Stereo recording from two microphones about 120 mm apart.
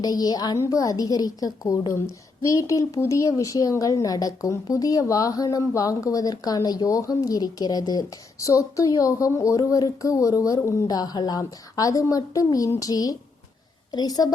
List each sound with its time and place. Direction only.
0.0 s a woman's voice: 35° left (ahead or behind)